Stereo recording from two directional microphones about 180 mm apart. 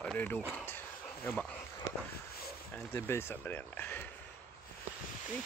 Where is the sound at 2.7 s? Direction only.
15° left (ahead or behind).